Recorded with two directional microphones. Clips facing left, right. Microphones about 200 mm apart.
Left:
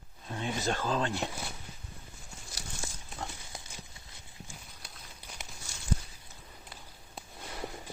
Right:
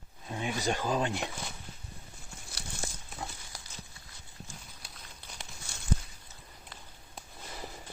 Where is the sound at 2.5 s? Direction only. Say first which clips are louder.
Right 2 dB; 60° right (ahead or behind).